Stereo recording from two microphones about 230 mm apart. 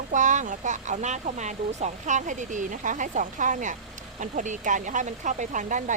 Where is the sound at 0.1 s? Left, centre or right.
Right.